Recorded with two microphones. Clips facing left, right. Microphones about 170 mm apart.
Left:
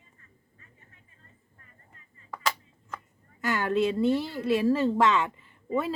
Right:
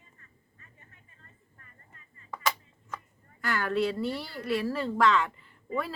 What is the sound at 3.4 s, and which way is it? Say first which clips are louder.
A woman's voice: left 3 dB; 20° left (ahead or behind).